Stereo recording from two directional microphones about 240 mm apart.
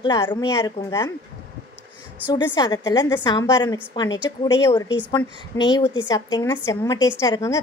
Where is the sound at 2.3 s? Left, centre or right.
Centre.